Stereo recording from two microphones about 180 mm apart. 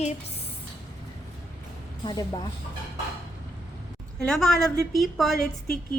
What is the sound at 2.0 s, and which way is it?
Speech, 25° left (ahead or behind).